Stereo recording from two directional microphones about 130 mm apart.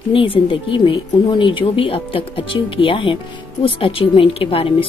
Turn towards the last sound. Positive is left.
turn(degrees=45)  # may be behind; listen again after turning